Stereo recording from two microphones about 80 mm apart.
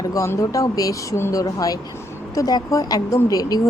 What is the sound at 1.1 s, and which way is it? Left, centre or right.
Speech, left.